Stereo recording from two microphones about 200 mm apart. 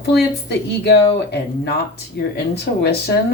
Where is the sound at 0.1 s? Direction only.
55° left (ahead or behind).